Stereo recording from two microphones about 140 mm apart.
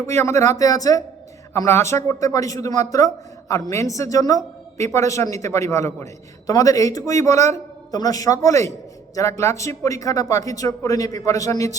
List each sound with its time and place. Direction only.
0.0 s speech: 20° left (ahead or behind)